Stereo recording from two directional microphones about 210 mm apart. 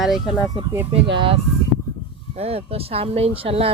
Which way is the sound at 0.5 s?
10° right (ahead or behind).